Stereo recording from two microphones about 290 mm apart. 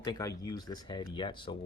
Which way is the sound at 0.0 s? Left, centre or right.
Centre.